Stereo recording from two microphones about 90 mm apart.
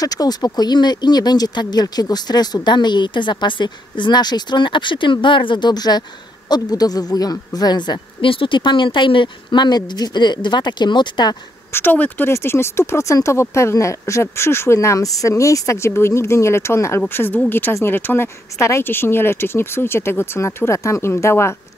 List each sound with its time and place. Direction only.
0.0 s speech: 45° left (ahead or behind)
8.3 s speech: 70° left (ahead or behind)
11.7 s speech: 20° left (ahead or behind)